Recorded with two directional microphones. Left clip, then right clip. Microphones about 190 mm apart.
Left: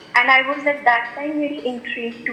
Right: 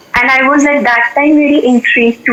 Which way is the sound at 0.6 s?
60° right (ahead or behind).